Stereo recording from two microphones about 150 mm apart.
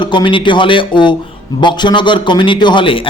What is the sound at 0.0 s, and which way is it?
A man's voice, 30° left (ahead or behind).